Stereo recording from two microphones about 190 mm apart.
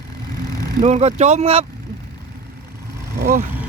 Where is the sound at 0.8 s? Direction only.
35° right (ahead or behind).